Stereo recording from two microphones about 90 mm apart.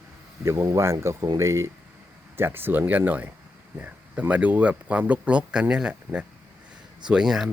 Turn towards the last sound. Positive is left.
turn(degrees=-5)  # may be behind; listen again after turning